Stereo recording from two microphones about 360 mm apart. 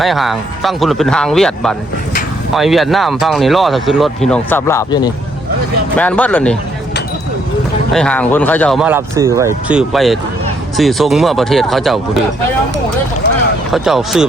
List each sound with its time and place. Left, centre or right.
0.0 s speech: centre
7.9 s speech: centre
13.2 s boat: left
13.7 s speech: centre